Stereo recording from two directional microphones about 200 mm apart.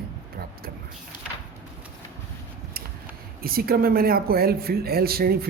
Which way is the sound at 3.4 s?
50° right (ahead or behind).